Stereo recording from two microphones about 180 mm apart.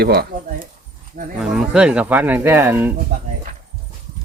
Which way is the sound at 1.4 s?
5° right (ahead or behind).